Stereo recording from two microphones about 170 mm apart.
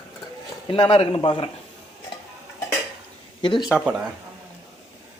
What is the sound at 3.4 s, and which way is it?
Speech, 30° left (ahead or behind).